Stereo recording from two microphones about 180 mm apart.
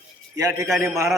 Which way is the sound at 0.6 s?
Centre (ahead or behind).